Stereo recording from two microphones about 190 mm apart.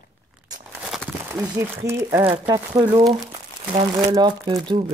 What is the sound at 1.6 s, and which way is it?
Speech, 15° right (ahead or behind).